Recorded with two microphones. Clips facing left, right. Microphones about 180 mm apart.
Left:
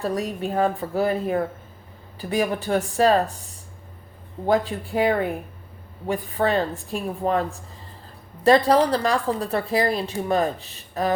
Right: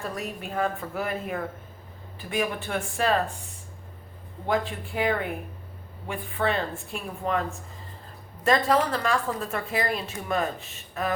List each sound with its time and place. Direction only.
0.0 s a woman's voice: 35° left (ahead or behind)
4.4 s a woman's voice: 35° left (ahead or behind)
8.4 s a woman's voice: 35° left (ahead or behind)